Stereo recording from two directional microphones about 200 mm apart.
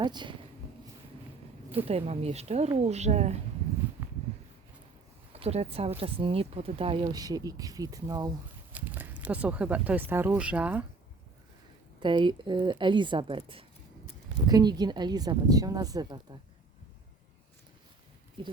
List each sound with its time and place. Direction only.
0.0 s speech: 20° right (ahead or behind)
1.7 s speech: 30° right (ahead or behind)
5.3 s speech: 30° right (ahead or behind); by 10.8 s 5° right (ahead or behind)
11.9 s speech: 25° right (ahead or behind)